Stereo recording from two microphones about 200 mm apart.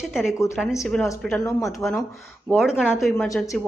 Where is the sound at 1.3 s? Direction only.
15° left (ahead or behind).